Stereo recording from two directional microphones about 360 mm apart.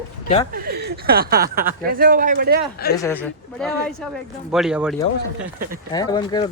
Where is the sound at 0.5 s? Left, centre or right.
Right.